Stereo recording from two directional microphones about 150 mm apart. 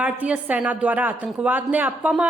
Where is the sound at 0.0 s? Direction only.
10° right (ahead or behind).